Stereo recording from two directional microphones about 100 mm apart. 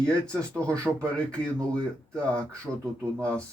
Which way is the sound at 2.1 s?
10° left (ahead or behind).